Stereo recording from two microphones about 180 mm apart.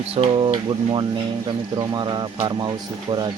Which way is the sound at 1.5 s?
25° right (ahead or behind).